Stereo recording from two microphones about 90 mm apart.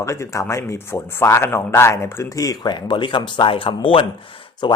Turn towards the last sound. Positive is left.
turn(degrees=70)  # may be behind; listen again after turning